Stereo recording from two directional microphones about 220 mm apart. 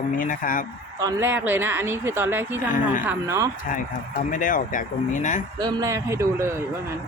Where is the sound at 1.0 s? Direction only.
15° right (ahead or behind).